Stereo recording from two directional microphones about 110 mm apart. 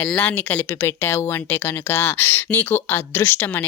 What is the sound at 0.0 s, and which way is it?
Speech, 15° left (ahead or behind).